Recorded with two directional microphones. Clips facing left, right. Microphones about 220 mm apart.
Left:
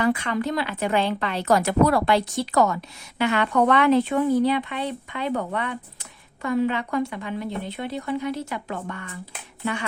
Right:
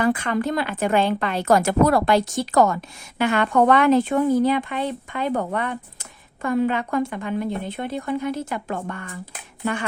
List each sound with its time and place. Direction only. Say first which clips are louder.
0.0 s a woman's voice: right 2 dB; 50° right (ahead or behind)